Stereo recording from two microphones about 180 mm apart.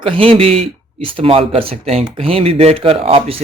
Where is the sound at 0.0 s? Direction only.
30° right (ahead or behind).